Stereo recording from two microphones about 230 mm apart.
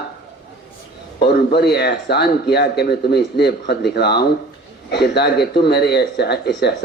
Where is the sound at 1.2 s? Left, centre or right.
Left.